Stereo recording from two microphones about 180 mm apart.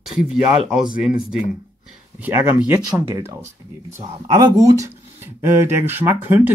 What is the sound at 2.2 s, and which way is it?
Speech, 10° right (ahead or behind).